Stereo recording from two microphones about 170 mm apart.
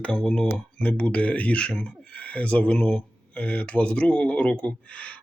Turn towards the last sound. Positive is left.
turn(degrees=10)  # may be behind; listen again after turning